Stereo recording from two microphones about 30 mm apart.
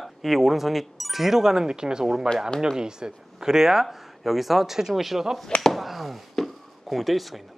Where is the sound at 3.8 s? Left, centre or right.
Centre.